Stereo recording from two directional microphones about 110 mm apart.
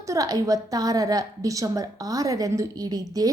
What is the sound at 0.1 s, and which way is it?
A woman's voice, 35° right (ahead or behind).